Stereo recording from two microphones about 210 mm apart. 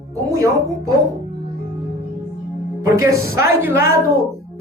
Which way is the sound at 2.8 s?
15° right (ahead or behind).